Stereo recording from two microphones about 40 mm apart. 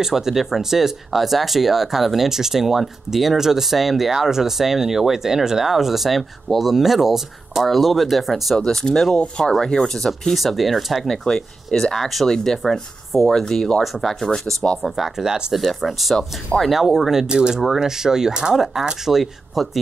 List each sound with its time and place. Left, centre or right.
0.0 s speech: centre
8.5 s speech: centre
10.3 s speech: centre
11.2 s speech: centre
14.8 s speech: centre
15.6 s speech: centre
17.3 s speech: centre
17.6 s speech: centre
17.8 s speech: centre